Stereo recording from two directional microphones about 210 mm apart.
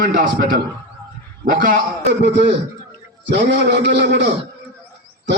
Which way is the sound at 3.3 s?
55° right (ahead or behind).